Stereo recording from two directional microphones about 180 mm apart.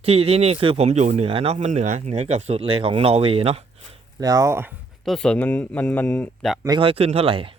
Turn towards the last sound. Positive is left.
turn(degrees=-30)  # may be behind; listen again after turning